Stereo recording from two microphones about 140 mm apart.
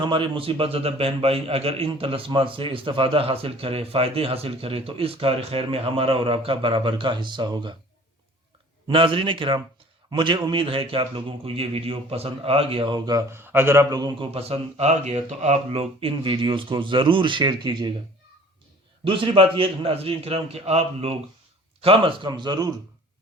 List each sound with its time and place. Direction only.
0.0 s a man's voice: 35° right (ahead or behind)
8.9 s a man's voice: 40° right (ahead or behind)
13.3 s a man's voice: 15° right (ahead or behind)
14.3 s a man's voice: 45° right (ahead or behind)
19.0 s a man's voice: 35° right (ahead or behind)